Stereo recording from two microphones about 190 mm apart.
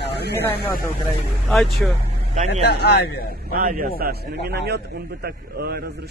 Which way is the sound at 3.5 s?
50° right (ahead or behind).